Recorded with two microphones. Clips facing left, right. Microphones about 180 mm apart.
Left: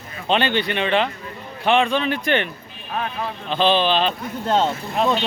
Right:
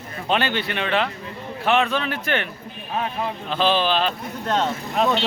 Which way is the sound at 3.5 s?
5° right (ahead or behind).